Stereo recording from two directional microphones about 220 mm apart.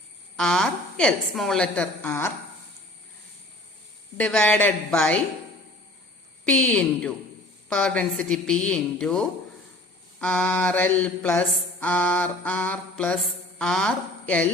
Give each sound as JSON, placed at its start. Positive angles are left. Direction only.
{"t": 0.3, "sound": "a woman's voice", "side_deg": 0}
{"t": 4.2, "sound": "a woman's voice", "side_deg": 5}
{"t": 6.4, "sound": "a woman's voice", "side_deg": 5}
{"t": 10.2, "sound": "mantra", "side_deg": 5}
{"t": 13.6, "sound": "a woman's voice", "side_deg": 5}